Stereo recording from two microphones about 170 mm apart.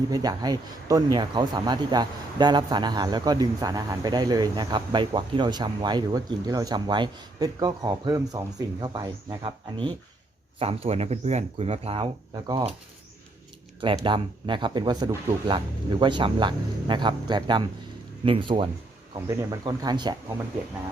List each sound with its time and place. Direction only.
0.1 s speech: 25° right (ahead or behind)
13.8 s speech: 30° right (ahead or behind)
19.3 s speech: 15° right (ahead or behind)